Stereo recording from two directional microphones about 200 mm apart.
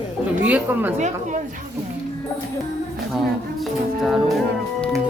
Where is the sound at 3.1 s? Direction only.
Centre (ahead or behind).